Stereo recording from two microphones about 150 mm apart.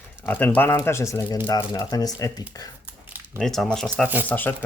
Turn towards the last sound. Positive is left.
turn(degrees=10)  # may be behind; listen again after turning